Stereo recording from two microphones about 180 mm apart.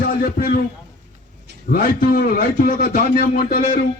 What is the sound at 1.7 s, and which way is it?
A man's voice, 55° left (ahead or behind).